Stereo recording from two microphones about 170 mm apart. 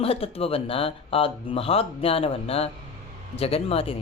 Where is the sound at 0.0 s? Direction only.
35° left (ahead or behind).